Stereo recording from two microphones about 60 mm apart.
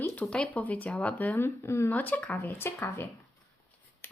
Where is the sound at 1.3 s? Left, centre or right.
Left.